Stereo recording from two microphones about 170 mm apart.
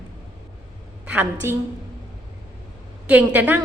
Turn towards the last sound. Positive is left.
turn(degrees=-10)  # may be behind; listen again after turning